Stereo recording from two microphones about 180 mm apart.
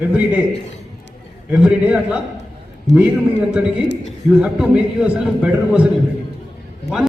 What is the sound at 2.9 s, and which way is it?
Speech, 40° left (ahead or behind).